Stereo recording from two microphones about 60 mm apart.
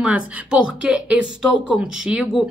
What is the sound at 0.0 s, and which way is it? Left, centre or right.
Speech, centre.